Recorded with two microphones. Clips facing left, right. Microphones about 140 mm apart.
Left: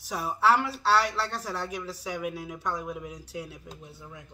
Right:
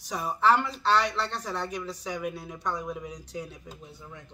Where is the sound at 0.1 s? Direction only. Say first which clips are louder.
Even; 5° left (ahead or behind).